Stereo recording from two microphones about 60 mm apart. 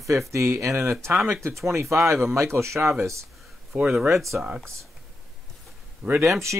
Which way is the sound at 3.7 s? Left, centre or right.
Centre.